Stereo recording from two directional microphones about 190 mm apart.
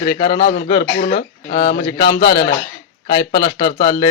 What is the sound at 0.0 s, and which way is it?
Speech, 20° left (ahead or behind).